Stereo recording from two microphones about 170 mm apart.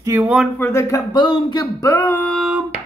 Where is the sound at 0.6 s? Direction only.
15° left (ahead or behind).